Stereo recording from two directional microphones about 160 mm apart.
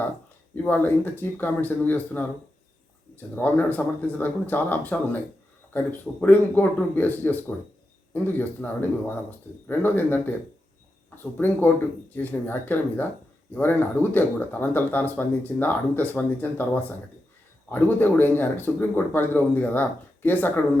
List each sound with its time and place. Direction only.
0.5 s speech: 10° left (ahead or behind)
11.2 s speech: 15° left (ahead or behind)